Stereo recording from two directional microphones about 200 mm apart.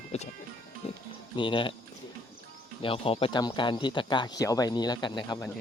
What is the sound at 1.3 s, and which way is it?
Speech, 25° left (ahead or behind).